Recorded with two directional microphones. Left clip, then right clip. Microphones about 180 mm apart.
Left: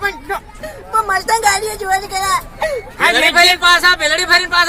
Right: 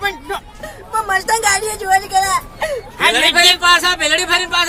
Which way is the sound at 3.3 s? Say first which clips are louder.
Even; 15° right (ahead or behind).